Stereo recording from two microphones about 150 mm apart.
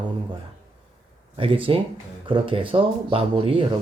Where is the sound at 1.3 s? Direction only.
35° right (ahead or behind).